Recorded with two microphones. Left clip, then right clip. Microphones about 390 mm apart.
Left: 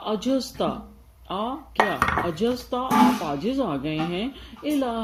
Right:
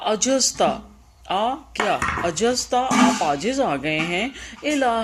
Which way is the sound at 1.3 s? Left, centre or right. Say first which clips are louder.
Right 7 dB; right.